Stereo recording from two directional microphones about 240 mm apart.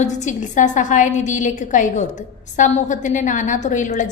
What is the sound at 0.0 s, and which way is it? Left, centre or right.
A woman's voice, left.